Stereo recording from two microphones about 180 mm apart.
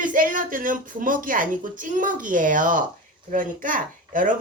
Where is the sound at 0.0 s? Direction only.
50° right (ahead or behind).